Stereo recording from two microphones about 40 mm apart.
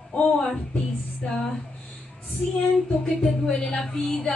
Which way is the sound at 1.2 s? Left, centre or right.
Left.